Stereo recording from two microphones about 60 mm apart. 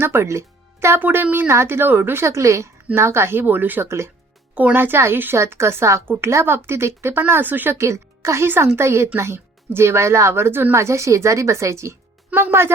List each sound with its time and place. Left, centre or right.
0.0 s speech: right
1.0 s speech: right
2.2 s speech: right
2.9 s speech: right
3.8 s a woman's voice: right
4.5 s a woman's voice: right
7.7 s a woman's voice: right
8.4 s a woman's voice: right
10.8 s speech: right
12.3 s a woman's voice: right